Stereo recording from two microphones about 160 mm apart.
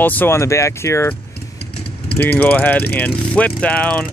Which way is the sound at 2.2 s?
10° left (ahead or behind).